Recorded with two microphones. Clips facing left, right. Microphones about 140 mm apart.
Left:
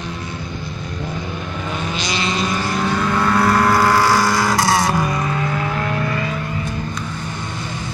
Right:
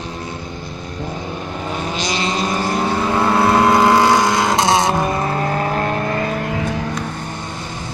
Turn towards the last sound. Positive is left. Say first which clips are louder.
# right 4 dB
turn(degrees=-90)